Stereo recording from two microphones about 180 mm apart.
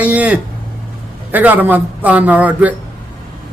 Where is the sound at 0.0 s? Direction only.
5° right (ahead or behind).